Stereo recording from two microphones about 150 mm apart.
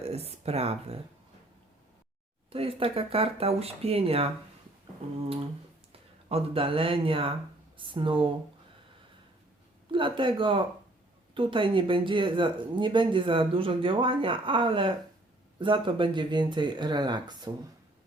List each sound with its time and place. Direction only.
0.0 s speech: 45° right (ahead or behind)
2.5 s speech: 40° right (ahead or behind)
6.2 s speech: 40° right (ahead or behind)
9.9 s speech: 35° right (ahead or behind)